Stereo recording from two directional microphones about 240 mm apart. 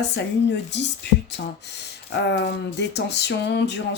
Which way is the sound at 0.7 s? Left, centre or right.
Left.